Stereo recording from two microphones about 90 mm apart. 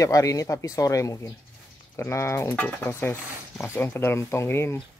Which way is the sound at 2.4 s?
20° left (ahead or behind).